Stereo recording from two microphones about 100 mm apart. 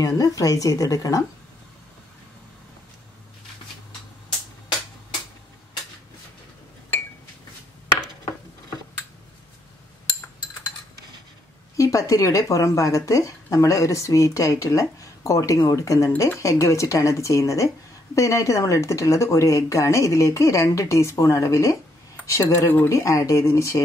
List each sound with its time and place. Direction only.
0.0 s speech: 35° left (ahead or behind)
11.7 s speech: 35° left (ahead or behind)